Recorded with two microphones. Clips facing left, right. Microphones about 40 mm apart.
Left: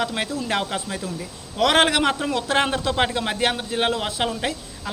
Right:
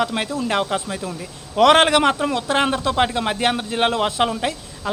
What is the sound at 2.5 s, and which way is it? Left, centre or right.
A woman's voice, centre.